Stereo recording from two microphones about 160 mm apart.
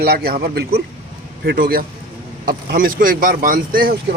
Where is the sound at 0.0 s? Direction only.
75° right (ahead or behind).